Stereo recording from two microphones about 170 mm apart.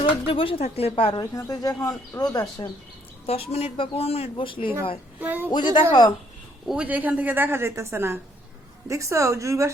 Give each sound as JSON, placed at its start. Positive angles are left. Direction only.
{"t": 0.0, "sound": "speech", "side_deg": 30}
{"t": 1.2, "sound": "speech", "side_deg": 20}
{"t": 3.2, "sound": "speech", "side_deg": 35}
{"t": 5.2, "sound": "a woman's voice", "side_deg": -10}
{"t": 5.5, "sound": "speech", "side_deg": 25}
{"t": 6.7, "sound": "a woman's voice", "side_deg": -10}